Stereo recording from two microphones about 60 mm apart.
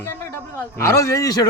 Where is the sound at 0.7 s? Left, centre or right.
Left.